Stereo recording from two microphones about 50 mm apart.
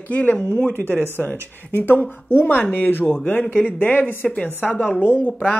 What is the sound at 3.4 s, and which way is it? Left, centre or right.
Speech, left.